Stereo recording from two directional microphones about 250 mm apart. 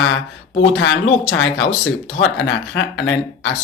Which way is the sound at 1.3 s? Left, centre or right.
Left.